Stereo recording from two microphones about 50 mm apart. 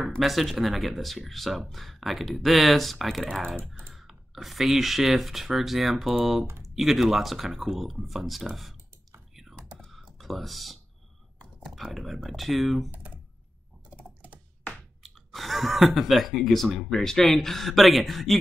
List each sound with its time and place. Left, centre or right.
0.2 s speech: centre
9.3 s computer keyboard: centre
10.1 s speech: centre
12.9 s computer keyboard: right
15.0 s speech: centre